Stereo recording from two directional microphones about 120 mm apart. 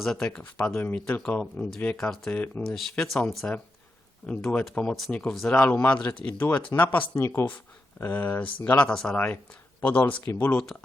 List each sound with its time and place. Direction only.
0.0 s speech: 5° left (ahead or behind)
10.6 s speech: 5° left (ahead or behind)